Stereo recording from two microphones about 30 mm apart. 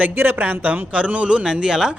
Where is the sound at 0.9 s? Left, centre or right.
Right.